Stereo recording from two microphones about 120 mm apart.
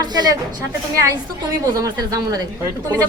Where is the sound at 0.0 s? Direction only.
35° right (ahead or behind).